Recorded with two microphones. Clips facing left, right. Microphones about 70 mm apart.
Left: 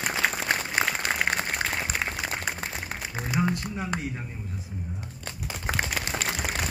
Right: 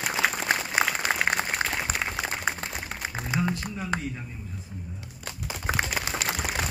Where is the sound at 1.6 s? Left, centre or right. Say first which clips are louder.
Right 1 dB; right.